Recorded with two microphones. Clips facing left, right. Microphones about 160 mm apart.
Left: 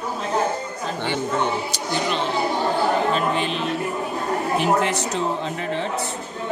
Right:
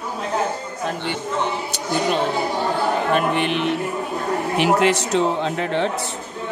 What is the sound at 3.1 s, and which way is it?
Speech, 65° right (ahead or behind).